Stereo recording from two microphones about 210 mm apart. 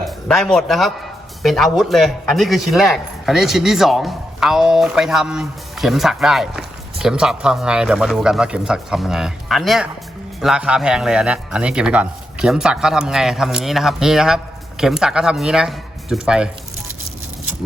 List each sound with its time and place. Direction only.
0.3 s speech: centre (ahead or behind)